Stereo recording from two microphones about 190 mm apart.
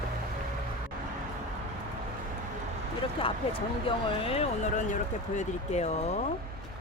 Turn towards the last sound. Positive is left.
turn(degrees=35)  # may be behind; listen again after turning